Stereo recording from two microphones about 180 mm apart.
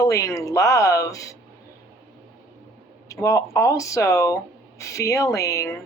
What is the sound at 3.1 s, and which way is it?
Speech, 15° left (ahead or behind).